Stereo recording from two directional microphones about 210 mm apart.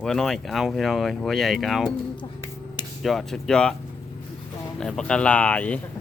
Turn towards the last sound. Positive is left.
turn(degrees=5)  # may be behind; listen again after turning